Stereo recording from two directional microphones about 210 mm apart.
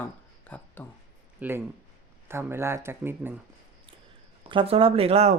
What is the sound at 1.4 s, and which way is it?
Speech, 10° right (ahead or behind).